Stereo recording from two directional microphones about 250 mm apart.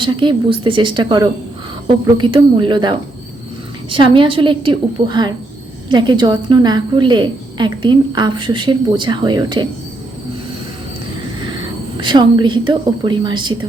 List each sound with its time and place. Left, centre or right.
0.0 s a woman's voice: centre
11.9 s a woman's voice: centre